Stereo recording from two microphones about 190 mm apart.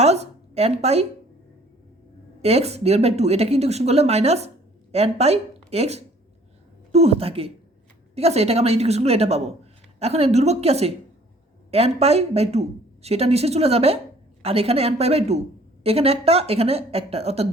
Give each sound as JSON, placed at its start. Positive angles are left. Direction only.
{"t": 0.0, "sound": "a woman's voice", "side_deg": -35}
{"t": 2.4, "sound": "speech", "side_deg": -35}